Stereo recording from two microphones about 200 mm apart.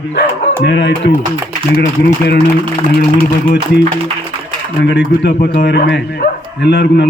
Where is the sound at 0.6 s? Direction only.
60° left (ahead or behind).